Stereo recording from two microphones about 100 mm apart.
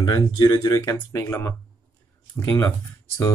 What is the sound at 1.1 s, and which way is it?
Speech, 25° left (ahead or behind).